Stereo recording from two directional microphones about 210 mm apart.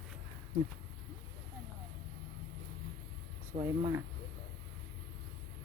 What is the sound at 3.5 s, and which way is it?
Speech, 45° right (ahead or behind).